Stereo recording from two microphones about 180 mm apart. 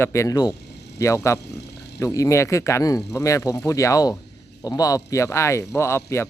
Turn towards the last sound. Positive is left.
turn(degrees=15)  # may be behind; listen again after turning